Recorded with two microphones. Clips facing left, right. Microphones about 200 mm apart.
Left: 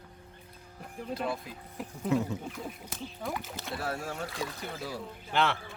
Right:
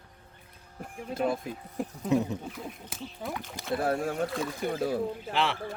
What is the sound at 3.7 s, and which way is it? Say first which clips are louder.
Speech: right 8 dB; 50° right (ahead or behind).